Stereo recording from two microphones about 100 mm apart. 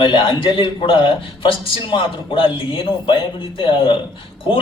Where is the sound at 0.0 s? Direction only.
55° left (ahead or behind).